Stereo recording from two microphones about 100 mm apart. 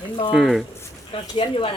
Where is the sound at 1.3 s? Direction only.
55° left (ahead or behind).